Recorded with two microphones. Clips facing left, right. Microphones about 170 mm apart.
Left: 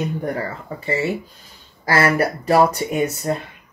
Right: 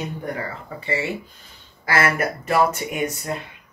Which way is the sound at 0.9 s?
35° left (ahead or behind).